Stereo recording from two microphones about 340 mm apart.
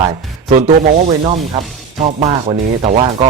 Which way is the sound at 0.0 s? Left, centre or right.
Centre.